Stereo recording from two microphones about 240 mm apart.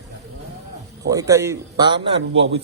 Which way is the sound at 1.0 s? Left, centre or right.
Centre.